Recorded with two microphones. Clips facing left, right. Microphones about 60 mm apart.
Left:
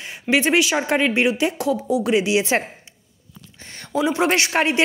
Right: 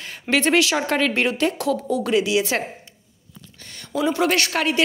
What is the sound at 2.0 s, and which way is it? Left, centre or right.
Speech, left.